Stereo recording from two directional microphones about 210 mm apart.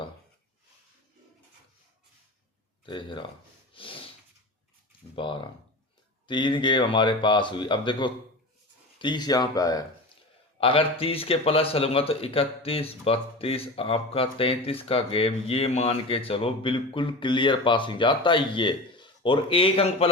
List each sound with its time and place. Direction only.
2.8 s a man's voice: 25° left (ahead or behind)
3.8 s a sound: 25° left (ahead or behind)
5.1 s a man's voice: 25° left (ahead or behind)